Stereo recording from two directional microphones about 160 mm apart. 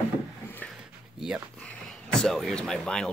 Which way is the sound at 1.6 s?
5° left (ahead or behind).